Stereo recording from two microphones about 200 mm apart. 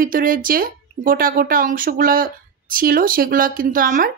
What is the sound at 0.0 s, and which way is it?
Speech, 45° right (ahead or behind).